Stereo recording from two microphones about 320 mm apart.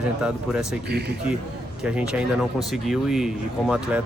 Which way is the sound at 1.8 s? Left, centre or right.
Centre.